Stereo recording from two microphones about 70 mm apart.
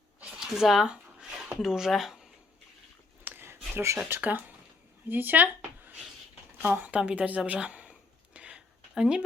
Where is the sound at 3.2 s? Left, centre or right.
Right.